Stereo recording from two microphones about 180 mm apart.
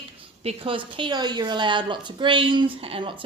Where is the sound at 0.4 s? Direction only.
30° right (ahead or behind).